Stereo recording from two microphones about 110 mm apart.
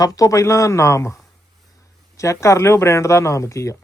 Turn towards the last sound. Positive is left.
turn(degrees=25)  # may be behind; listen again after turning